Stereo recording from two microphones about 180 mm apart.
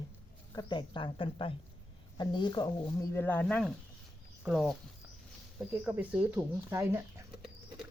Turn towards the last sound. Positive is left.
turn(degrees=-15)  # may be behind; listen again after turning